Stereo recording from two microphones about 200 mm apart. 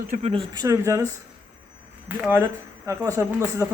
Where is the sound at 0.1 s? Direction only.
30° right (ahead or behind); by 1.0 s 15° right (ahead or behind).